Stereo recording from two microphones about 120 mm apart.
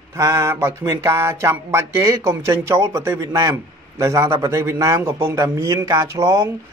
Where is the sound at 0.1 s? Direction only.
25° right (ahead or behind).